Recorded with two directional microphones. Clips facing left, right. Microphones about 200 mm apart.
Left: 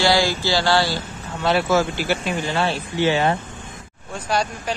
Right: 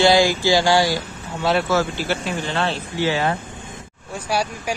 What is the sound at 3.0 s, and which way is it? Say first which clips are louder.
Speech: left 2 dB; 25° left (ahead or behind).